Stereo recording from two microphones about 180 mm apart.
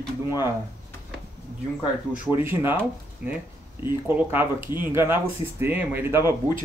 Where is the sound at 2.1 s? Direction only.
10° right (ahead or behind).